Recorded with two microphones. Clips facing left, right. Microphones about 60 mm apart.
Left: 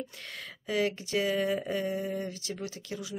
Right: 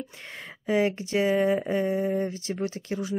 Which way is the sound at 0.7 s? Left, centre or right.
Right.